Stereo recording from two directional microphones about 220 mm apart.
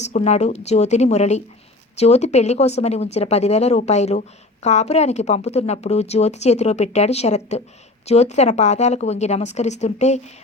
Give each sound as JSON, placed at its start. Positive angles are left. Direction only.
{"t": 0.0, "sound": "a woman's voice", "side_deg": 30}